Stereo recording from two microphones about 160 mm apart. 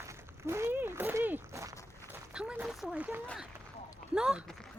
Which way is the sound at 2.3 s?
5° right (ahead or behind).